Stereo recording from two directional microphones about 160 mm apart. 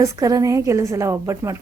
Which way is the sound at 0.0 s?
20° right (ahead or behind).